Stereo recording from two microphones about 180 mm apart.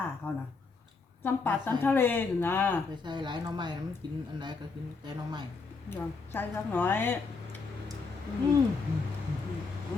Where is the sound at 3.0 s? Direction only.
25° right (ahead or behind).